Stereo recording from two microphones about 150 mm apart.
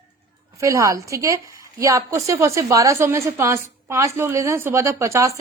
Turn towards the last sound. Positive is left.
turn(degrees=-20)  # may be behind; listen again after turning